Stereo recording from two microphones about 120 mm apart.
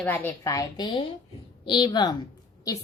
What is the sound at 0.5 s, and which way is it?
A woman's voice, 35° left (ahead or behind).